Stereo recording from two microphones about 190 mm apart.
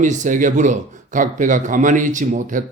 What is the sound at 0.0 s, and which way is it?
A man's voice, 40° right (ahead or behind).